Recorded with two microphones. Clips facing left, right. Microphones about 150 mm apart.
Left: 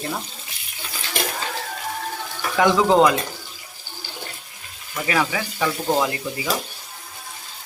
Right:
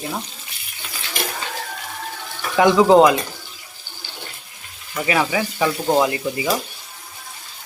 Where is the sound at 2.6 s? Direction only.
10° right (ahead or behind).